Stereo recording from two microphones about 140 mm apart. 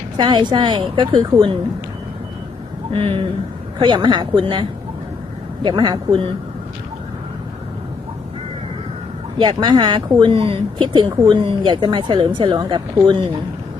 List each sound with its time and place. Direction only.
0.2 s a woman's voice: 30° right (ahead or behind)
2.9 s a woman's voice: 45° right (ahead or behind)
5.6 s a woman's voice: 30° right (ahead or behind)
9.4 s a woman's voice: 35° right (ahead or behind)